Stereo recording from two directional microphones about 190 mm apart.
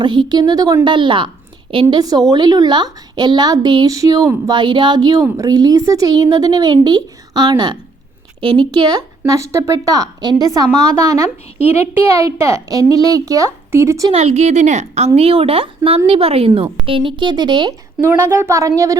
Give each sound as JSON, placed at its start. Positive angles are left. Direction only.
{"t": 0.0, "sound": "a child's voice", "side_deg": -25}
{"t": 14.1, "sound": "a woman's voice", "side_deg": -30}
{"t": 18.0, "sound": "a child's voice", "side_deg": -10}